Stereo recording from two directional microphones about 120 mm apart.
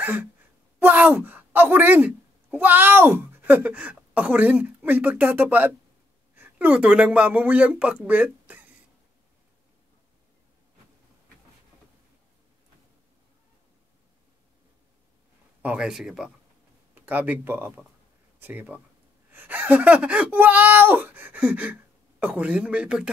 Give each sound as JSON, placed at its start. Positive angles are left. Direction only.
{"t": 0.0, "sound": "a woman's voice", "side_deg": -15}
{"t": 15.6, "sound": "speech", "side_deg": -5}